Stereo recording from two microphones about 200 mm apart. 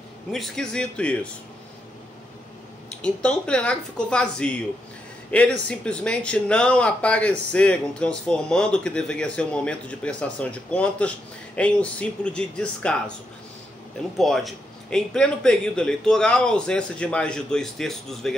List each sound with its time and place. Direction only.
0.3 s speech: centre (ahead or behind)
3.0 s speech: 5° left (ahead or behind)
14.1 s speech: centre (ahead or behind)